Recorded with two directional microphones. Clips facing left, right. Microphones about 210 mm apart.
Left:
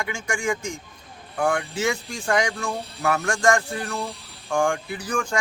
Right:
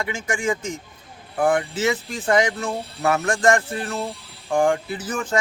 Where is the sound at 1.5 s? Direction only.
20° right (ahead or behind).